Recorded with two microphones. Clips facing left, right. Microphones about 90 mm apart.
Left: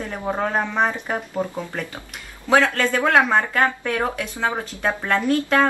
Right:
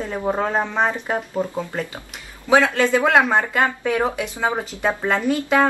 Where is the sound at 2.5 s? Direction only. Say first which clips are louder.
Right 2 dB; 10° right (ahead or behind).